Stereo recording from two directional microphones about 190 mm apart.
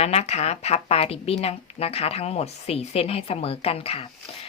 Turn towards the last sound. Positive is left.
turn(degrees=30)  # may be behind; listen again after turning